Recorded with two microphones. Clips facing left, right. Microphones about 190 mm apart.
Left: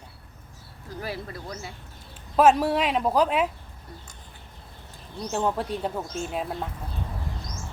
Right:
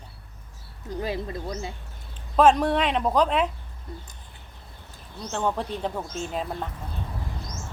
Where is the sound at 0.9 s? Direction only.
20° right (ahead or behind).